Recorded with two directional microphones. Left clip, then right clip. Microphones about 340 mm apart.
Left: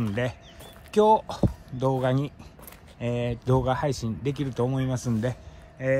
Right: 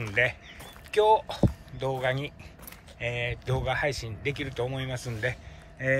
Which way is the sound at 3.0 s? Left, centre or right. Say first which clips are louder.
Left 2 dB; centre.